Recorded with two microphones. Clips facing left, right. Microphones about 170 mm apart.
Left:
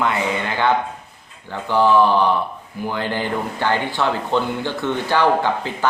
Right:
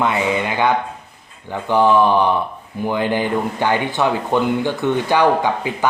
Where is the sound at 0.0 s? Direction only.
20° right (ahead or behind).